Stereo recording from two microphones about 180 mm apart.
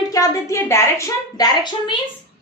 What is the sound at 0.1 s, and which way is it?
A woman's voice, 15° left (ahead or behind).